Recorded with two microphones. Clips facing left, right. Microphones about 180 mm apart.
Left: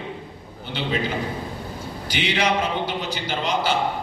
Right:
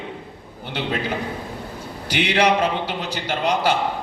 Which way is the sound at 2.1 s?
65° right (ahead or behind).